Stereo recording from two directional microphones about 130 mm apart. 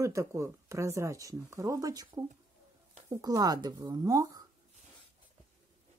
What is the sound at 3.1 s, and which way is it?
Speech, 30° right (ahead or behind).